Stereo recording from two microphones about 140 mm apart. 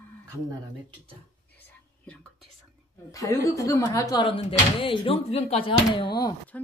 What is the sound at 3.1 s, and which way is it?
Speech, 25° left (ahead or behind).